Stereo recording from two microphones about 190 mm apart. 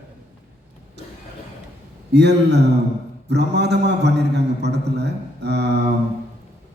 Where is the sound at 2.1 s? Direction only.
65° right (ahead or behind).